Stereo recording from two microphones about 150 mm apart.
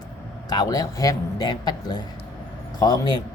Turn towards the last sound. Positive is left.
turn(degrees=25)  # may be behind; listen again after turning